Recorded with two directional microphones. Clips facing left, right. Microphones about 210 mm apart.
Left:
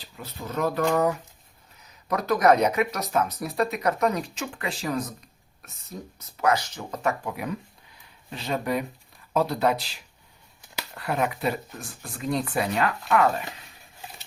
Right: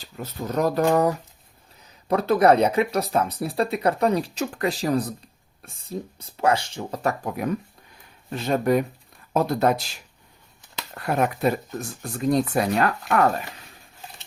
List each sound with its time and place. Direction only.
0.2 s speech: 40° right (ahead or behind)
10.9 s speech: 45° right (ahead or behind)